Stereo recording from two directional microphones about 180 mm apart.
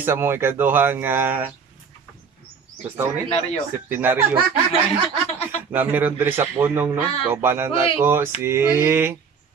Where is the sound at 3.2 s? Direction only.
35° left (ahead or behind).